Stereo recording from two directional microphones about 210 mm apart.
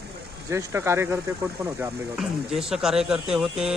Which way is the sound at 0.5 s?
15° right (ahead or behind).